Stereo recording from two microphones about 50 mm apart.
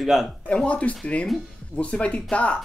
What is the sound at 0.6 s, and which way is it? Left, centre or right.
Speech, left.